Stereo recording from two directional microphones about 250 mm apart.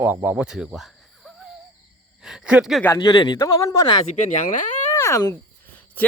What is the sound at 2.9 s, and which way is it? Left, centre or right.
Speech, centre.